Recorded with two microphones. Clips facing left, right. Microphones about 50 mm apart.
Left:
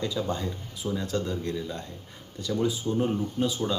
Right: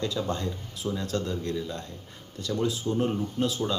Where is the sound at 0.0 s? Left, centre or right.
Centre.